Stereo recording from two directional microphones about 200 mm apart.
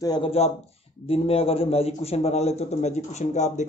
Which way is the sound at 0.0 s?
25° left (ahead or behind).